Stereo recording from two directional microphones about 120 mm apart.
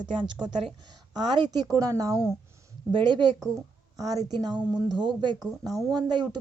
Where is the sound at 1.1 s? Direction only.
35° right (ahead or behind).